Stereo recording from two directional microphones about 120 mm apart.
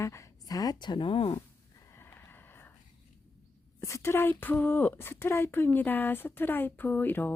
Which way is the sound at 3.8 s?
25° left (ahead or behind).